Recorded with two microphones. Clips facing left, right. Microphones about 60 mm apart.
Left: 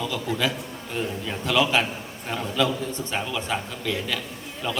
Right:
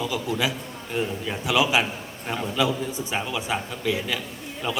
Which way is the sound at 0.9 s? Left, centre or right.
Centre.